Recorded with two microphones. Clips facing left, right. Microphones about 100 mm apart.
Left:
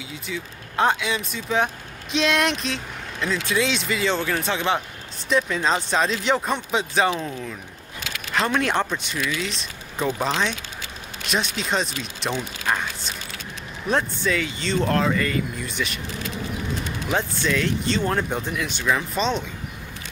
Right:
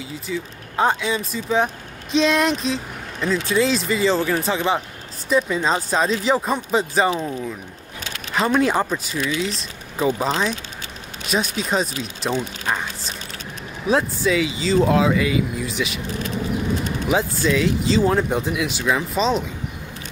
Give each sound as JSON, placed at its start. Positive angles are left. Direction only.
{"t": 0.1, "sound": "speech", "side_deg": 0}
{"t": 8.4, "sound": "speech", "side_deg": -5}
{"t": 16.1, "sound": "vehicle", "side_deg": -45}
{"t": 17.0, "sound": "speech", "side_deg": -5}